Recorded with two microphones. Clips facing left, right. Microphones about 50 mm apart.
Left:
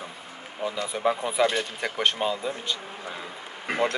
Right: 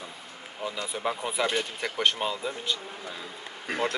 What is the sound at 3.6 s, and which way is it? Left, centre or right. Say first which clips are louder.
Speech: left 3 dB; left.